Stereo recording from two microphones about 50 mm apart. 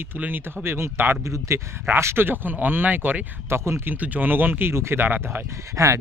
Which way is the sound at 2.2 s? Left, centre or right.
Right.